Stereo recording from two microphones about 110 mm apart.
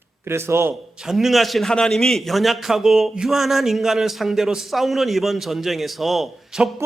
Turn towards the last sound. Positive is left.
turn(degrees=0)  # may be behind; listen again after turning